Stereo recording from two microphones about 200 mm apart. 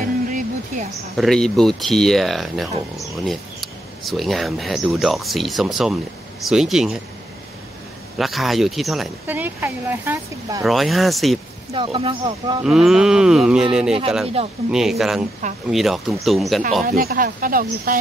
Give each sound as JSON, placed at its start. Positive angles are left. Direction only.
{"t": 0.0, "sound": "a sound", "side_deg": -40}
{"t": 1.1, "sound": "speech", "side_deg": 0}
{"t": 8.2, "sound": "speech", "side_deg": 0}
{"t": 11.7, "sound": "speech", "side_deg": -25}
{"t": 12.6, "sound": "speech", "side_deg": 0}
{"t": 14.2, "sound": "speech", "side_deg": -30}
{"t": 14.7, "sound": "speech", "side_deg": 0}
{"t": 16.8, "sound": "speech", "side_deg": -50}